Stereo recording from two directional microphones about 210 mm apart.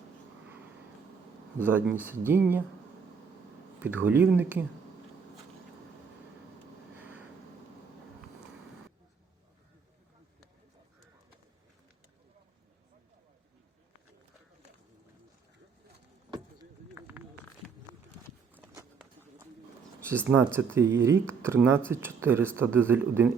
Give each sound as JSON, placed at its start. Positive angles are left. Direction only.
{"t": 1.6, "sound": "speech", "side_deg": -10}
{"t": 3.8, "sound": "speech", "side_deg": -10}
{"t": 16.3, "sound": "a sound", "side_deg": -20}
{"t": 18.5, "sound": "walk", "side_deg": -15}
{"t": 20.1, "sound": "speech", "side_deg": -10}